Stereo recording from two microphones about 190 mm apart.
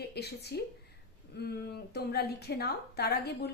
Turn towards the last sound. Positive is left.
turn(degrees=60)  # may be behind; listen again after turning